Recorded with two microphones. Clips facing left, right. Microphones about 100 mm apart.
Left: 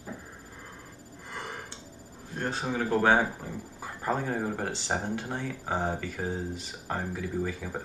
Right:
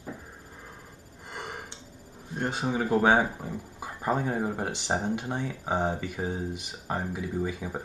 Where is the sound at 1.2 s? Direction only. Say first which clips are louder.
Right 1 dB; 20° right (ahead or behind).